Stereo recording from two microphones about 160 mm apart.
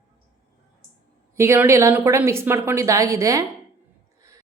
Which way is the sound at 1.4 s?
15° right (ahead or behind).